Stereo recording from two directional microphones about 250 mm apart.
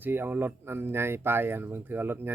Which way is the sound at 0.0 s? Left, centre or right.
Centre.